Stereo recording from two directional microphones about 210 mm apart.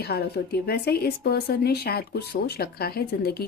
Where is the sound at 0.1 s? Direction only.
50° left (ahead or behind).